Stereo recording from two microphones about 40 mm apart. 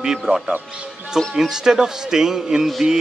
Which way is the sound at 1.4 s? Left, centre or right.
Centre.